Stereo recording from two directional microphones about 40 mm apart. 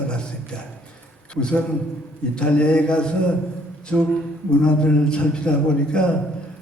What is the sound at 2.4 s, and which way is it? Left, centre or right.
Speech, left.